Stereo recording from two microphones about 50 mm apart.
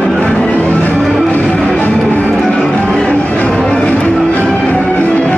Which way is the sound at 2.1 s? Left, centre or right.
Left.